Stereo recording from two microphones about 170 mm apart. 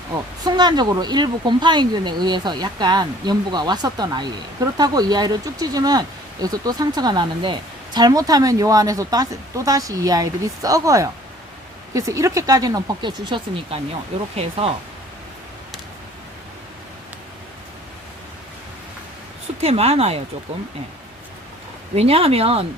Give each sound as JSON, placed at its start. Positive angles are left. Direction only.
{"t": 0.4, "sound": "speech", "side_deg": -25}
{"t": 19.6, "sound": "speech", "side_deg": -35}
{"t": 21.9, "sound": "speech", "side_deg": -35}